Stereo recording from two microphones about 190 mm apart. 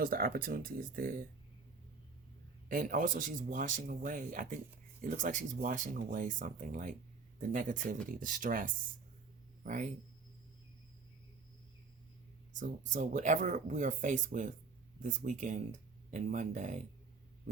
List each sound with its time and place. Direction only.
0.0 s speech: 50° right (ahead or behind)
2.6 s speech: 45° right (ahead or behind)
12.5 s speech: 40° right (ahead or behind)